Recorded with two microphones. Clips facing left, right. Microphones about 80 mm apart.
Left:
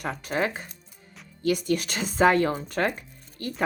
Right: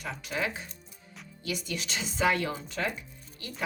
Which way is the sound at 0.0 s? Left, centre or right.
Left.